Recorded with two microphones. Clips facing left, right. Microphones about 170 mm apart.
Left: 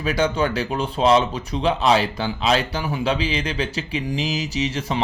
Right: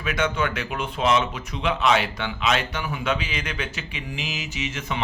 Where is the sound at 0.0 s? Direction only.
35° left (ahead or behind).